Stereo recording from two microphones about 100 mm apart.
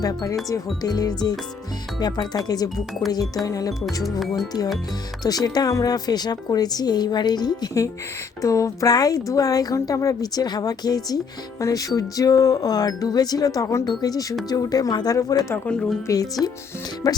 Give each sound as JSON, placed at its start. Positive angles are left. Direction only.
{"t": 0.0, "sound": "a woman's voice", "side_deg": 40}
{"t": 4.2, "sound": "speech", "side_deg": 0}
{"t": 5.2, "sound": "a woman's voice", "side_deg": 40}
{"t": 15.5, "sound": "speech", "side_deg": 15}
{"t": 16.0, "sound": "a woman's voice", "side_deg": 35}